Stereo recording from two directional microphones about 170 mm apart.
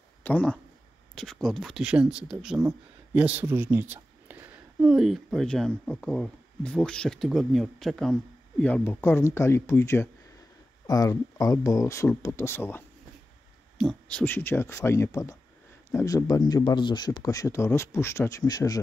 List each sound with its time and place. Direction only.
0.2 s a man's voice: 10° left (ahead or behind)